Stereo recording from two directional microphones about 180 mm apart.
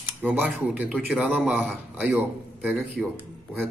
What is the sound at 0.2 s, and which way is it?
A man's voice, 10° right (ahead or behind).